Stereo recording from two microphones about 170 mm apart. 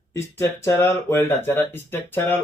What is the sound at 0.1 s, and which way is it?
Speech, 15° left (ahead or behind).